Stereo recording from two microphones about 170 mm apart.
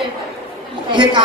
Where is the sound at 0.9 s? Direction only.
25° right (ahead or behind).